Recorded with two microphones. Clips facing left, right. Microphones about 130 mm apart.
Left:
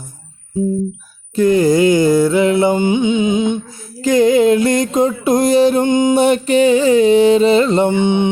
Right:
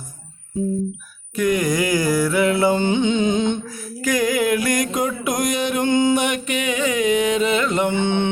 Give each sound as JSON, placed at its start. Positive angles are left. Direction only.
{"t": 1.4, "sound": "mantra", "side_deg": 30}
{"t": 2.8, "sound": "music", "side_deg": 10}
{"t": 3.7, "sound": "a sound", "side_deg": 25}
{"t": 5.9, "sound": "music", "side_deg": 20}
{"t": 6.1, "sound": "music", "side_deg": 30}
{"t": 7.9, "sound": "mantra", "side_deg": 15}